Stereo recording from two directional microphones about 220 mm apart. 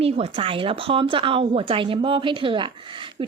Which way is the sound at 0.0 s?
25° right (ahead or behind).